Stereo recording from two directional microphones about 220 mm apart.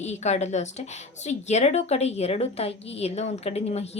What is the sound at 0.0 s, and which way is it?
A woman's voice, 30° left (ahead or behind).